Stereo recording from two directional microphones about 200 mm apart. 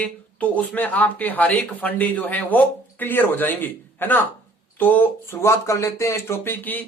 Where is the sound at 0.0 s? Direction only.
5° left (ahead or behind).